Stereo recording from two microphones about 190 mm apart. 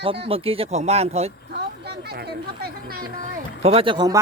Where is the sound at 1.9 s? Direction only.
60° right (ahead or behind).